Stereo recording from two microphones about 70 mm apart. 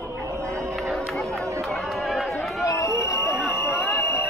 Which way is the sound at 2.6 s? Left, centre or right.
Left.